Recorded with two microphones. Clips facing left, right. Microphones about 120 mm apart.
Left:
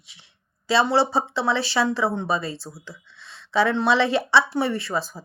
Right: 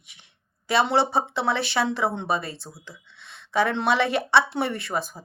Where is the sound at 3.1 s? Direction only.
55° right (ahead or behind).